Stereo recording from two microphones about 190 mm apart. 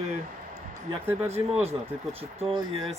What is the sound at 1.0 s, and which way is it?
Speech, 10° right (ahead or behind).